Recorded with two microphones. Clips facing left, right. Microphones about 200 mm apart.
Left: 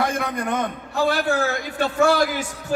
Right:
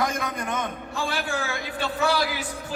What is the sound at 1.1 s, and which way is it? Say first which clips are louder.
A man's voice: left 7 dB; 40° left (ahead or behind).